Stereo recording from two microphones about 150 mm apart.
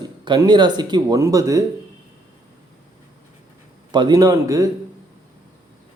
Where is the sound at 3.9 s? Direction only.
30° right (ahead or behind).